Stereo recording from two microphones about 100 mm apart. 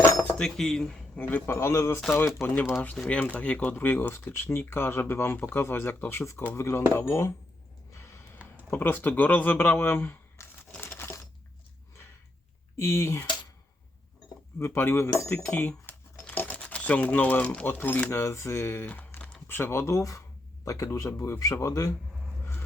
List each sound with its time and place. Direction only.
0.2 s cutlery: 10° left (ahead or behind)
1.5 s speech: 30° left (ahead or behind)
3.0 s speech: 10° left (ahead or behind); by 7.3 s 30° left (ahead or behind)
7.9 s gasp: 25° left (ahead or behind)
8.7 s speech: 20° left (ahead or behind)
10.4 s crumpling: 30° left (ahead or behind)
10.8 s a sound: 20° left (ahead or behind)
12.7 s speech: 30° left (ahead or behind)
14.6 s speech: 25° left (ahead or behind)